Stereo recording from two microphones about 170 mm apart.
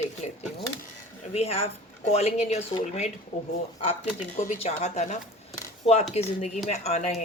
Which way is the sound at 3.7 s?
35° left (ahead or behind).